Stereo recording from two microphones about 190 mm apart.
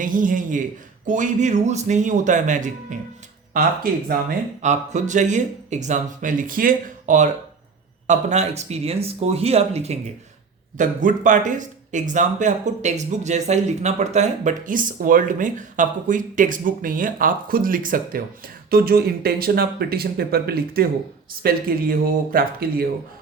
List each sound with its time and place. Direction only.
0.0 s speech: 45° right (ahead or behind)
4.6 s speech: 40° right (ahead or behind)